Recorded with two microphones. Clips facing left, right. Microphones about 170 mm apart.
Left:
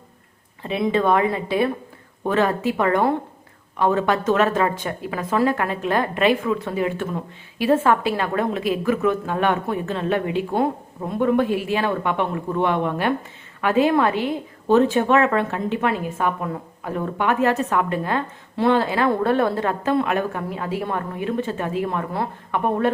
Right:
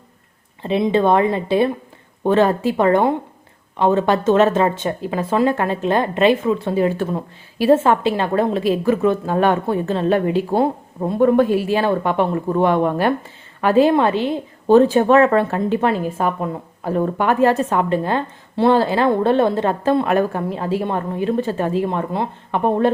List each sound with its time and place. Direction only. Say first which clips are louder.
0.6 s a woman's voice: right 4 dB; 30° right (ahead or behind)